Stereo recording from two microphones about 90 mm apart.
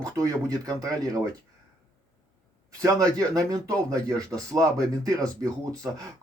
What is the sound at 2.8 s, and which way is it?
Speech, 40° right (ahead or behind).